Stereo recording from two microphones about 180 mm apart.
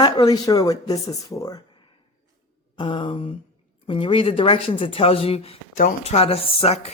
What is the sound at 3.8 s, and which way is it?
Speech, 30° left (ahead or behind).